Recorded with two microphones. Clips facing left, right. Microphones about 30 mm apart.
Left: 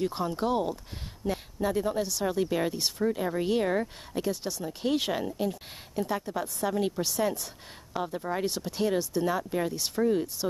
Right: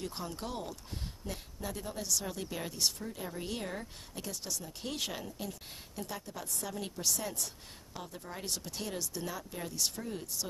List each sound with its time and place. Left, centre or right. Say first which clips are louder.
0.0 s speech: left 11 dB; left
3.0 s speech: left 13 dB; left
4.2 s speech: left 10 dB; left
8.5 s speech: left 9 dB; left